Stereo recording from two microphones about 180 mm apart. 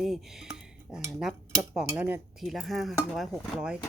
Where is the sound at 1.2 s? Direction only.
5° right (ahead or behind).